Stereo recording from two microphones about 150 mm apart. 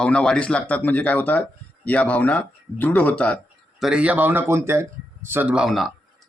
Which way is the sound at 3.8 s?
5° right (ahead or behind).